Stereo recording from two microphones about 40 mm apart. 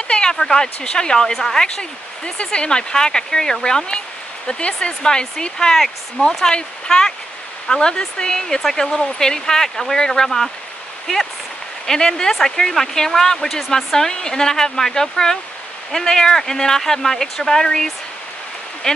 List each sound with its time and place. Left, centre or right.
0.1 s speech: centre
11.8 s speech: centre
18.8 s speech: centre